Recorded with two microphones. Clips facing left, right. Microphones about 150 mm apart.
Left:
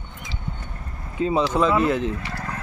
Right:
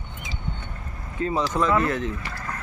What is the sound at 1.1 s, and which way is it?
Speech, 20° left (ahead or behind).